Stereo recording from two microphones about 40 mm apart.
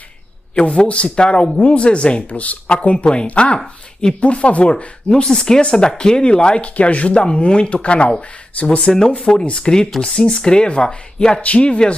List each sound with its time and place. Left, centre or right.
0.6 s speech: left
5.2 s speech: centre; by 7.2 s left
7.2 s speech: left
8.9 s speech: centre
9.4 s speech: left
11.4 s speech: left